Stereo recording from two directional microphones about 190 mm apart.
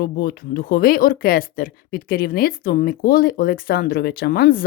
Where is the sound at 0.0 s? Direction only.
50° left (ahead or behind).